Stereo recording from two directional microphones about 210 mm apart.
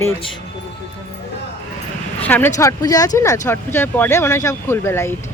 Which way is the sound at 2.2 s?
10° left (ahead or behind).